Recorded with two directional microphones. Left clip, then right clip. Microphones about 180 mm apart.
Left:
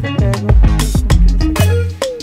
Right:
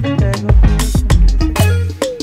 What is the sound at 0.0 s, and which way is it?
Music, centre (ahead or behind).